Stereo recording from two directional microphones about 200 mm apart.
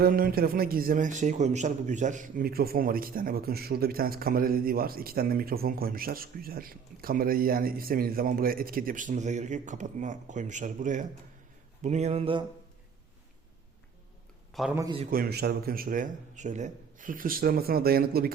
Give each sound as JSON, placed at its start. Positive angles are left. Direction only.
{"t": 0.0, "sound": "a man's voice", "side_deg": -45}
{"t": 11.8, "sound": "a sound", "side_deg": -35}
{"t": 14.8, "sound": "a man's voice", "side_deg": -20}
{"t": 15.1, "sound": "a man's voice", "side_deg": -50}